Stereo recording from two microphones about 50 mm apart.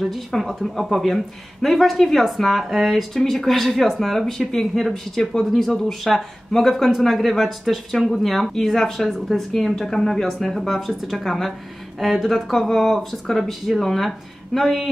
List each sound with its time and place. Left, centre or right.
0.0 s speech: centre